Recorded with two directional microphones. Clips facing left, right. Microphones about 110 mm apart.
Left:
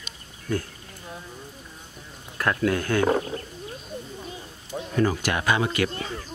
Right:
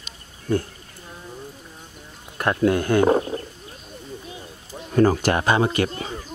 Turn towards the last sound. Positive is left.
turn(degrees=-30)  # may be behind; listen again after turning